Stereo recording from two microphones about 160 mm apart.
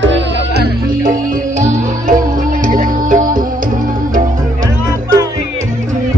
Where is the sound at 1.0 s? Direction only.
60° right (ahead or behind).